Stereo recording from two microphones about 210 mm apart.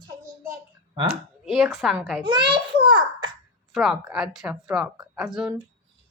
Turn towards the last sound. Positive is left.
turn(degrees=0)  # may be behind; listen again after turning